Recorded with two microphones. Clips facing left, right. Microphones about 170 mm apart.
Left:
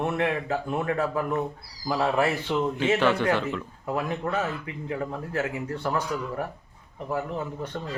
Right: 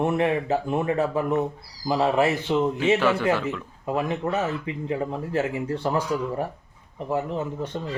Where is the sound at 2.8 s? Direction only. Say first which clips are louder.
Right 2 dB; 5° right (ahead or behind).